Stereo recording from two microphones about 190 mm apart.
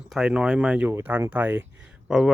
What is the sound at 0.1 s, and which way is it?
Speech, 5° right (ahead or behind).